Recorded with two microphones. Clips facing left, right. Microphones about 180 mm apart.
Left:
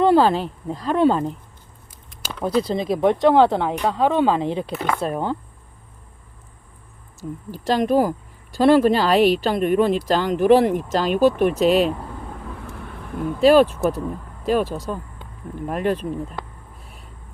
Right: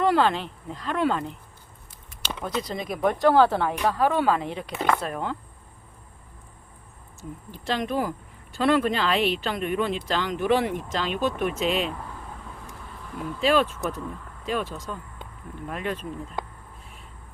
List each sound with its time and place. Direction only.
0.0 s speech: 30° left (ahead or behind)
2.4 s speech: 30° left (ahead or behind)
7.6 s speech: 40° left (ahead or behind)
12.7 s vehicle: 65° left (ahead or behind)
13.4 s speech: 40° left (ahead or behind)